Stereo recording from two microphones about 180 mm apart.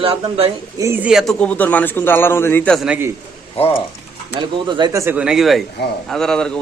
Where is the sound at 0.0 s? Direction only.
30° right (ahead or behind).